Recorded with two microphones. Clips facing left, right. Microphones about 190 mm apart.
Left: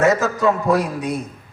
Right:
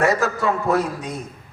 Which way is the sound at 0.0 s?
20° left (ahead or behind).